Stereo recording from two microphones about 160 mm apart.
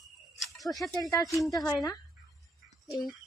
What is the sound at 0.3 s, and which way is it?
Snake, centre (ahead or behind).